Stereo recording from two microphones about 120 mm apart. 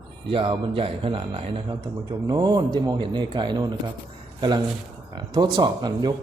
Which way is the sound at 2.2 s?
35° right (ahead or behind).